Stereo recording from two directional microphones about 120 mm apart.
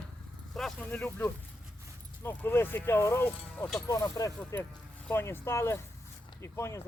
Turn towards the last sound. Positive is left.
turn(degrees=25)  # may be behind; listen again after turning